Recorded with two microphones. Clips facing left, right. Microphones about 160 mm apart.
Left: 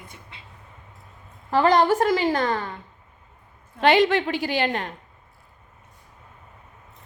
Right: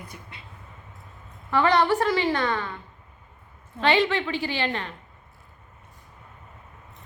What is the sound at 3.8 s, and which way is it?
A woman's voice, 45° left (ahead or behind).